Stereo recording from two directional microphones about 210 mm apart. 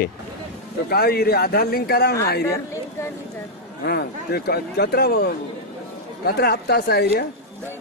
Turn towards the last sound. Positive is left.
turn(degrees=50)  # may be behind; listen again after turning